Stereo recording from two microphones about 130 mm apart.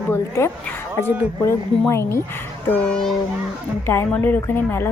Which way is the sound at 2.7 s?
5° left (ahead or behind).